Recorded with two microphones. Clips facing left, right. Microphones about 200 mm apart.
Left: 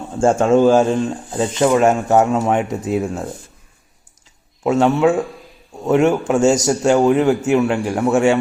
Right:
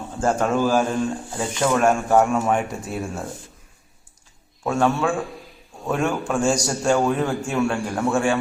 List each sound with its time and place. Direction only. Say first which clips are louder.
0.2 s speech: left 7 dB; 25° left (ahead or behind)
4.6 s speech: left 6 dB; 20° left (ahead or behind)